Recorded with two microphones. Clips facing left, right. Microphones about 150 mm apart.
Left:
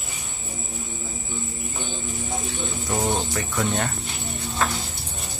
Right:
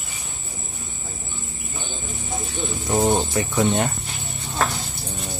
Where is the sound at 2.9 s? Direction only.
20° right (ahead or behind).